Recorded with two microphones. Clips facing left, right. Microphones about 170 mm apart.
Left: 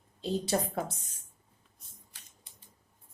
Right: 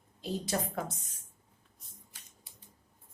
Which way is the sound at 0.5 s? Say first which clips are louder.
Left 3 dB; 30° left (ahead or behind).